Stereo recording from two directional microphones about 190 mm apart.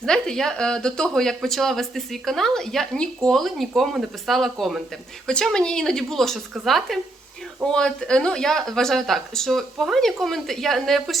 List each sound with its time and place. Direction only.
0.0 s speech: 5° left (ahead or behind)